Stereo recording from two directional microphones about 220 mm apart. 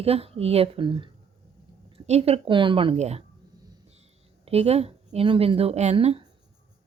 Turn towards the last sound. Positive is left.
turn(degrees=-30)  # may be behind; listen again after turning